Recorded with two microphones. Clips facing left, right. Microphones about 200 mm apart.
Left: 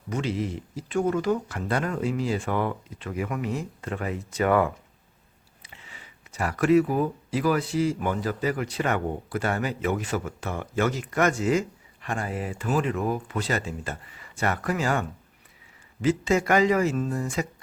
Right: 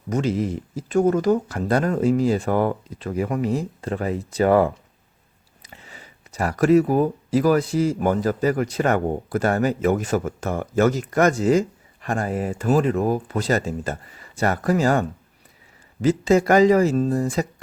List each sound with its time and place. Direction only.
0.1 s speech: 45° right (ahead or behind)